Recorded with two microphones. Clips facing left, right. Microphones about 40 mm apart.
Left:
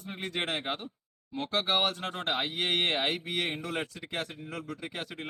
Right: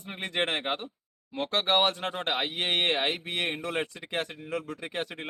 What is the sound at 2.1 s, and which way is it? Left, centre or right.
Speech, right.